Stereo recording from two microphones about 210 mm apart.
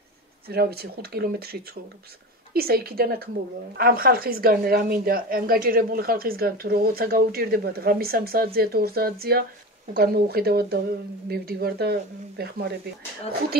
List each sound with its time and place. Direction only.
0.5 s a woman's voice: 50° right (ahead or behind)